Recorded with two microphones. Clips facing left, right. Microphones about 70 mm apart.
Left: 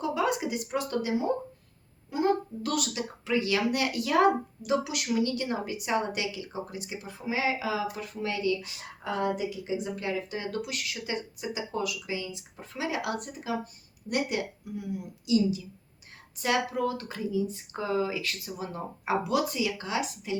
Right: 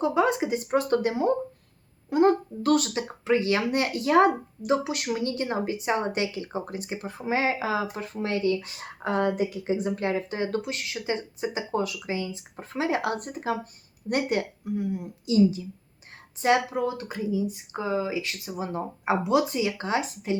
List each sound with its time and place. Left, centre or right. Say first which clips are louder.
0.0 s speech: right 5 dB; right
16.4 s speech: right 4 dB; right